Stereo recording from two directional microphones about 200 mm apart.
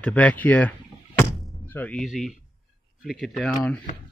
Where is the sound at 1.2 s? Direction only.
10° left (ahead or behind).